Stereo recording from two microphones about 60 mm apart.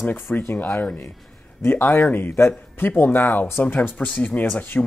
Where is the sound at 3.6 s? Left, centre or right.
Left.